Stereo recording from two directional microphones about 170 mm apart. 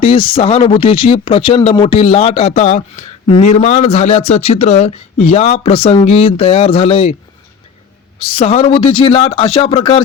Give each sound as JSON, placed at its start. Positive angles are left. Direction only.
{"t": 0.0, "sound": "speech", "side_deg": 30}
{"t": 8.2, "sound": "speech", "side_deg": 35}